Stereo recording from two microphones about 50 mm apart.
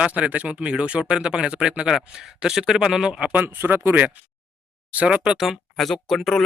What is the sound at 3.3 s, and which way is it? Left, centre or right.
Speech, right.